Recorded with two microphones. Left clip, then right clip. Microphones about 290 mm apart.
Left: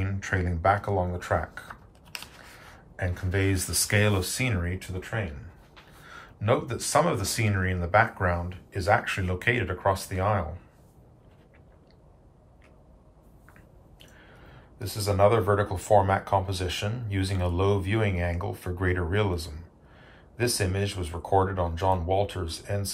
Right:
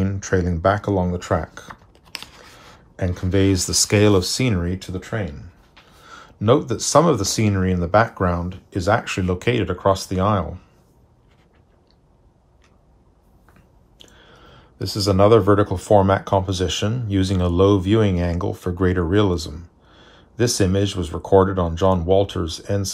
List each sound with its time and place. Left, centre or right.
0.0 s speech: centre
3.0 s speech: centre
6.0 s speech: right
14.8 s speech: right